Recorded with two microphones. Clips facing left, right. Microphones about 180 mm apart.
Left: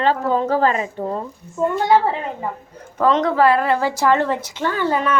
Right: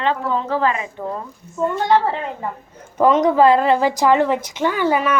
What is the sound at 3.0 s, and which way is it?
A woman's voice, 15° right (ahead or behind).